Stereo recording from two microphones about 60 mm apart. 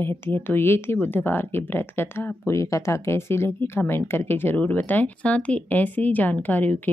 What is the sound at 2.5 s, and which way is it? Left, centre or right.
Speech, left.